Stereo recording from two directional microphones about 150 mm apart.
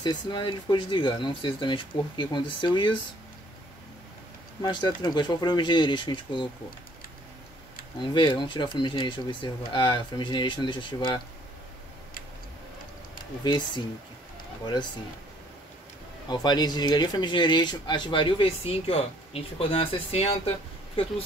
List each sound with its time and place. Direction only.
0.0 s speech: 30° left (ahead or behind)
4.6 s speech: 30° left (ahead or behind)
8.0 s speech: 30° left (ahead or behind)
13.4 s speech: 30° left (ahead or behind)
16.3 s speech: 25° left (ahead or behind)